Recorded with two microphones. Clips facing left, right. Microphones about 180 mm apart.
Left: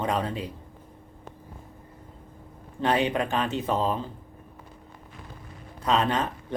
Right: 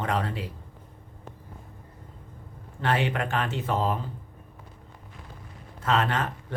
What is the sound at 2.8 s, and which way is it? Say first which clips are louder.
Speech: left 2 dB; 20° left (ahead or behind).